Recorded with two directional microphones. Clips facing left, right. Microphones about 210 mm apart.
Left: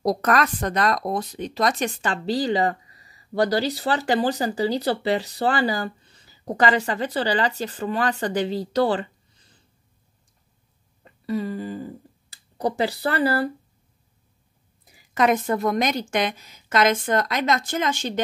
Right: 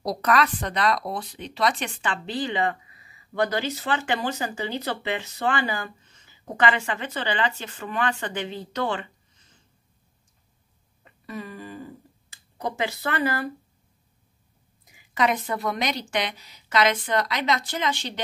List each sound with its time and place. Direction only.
0.0 s speech: 45° left (ahead or behind)
11.1 s speech: 35° left (ahead or behind)
15.0 s a woman's voice: 45° left (ahead or behind)